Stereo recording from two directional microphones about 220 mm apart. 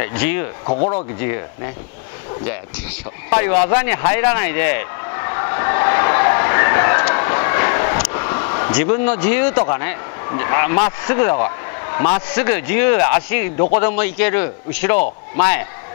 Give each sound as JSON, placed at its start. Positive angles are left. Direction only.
{"t": 0.0, "sound": "a man's voice", "side_deg": 10}
{"t": 0.7, "sound": "speech", "side_deg": 30}
{"t": 3.3, "sound": "a sound", "side_deg": 15}
{"t": 13.7, "sound": "a man's voice", "side_deg": 10}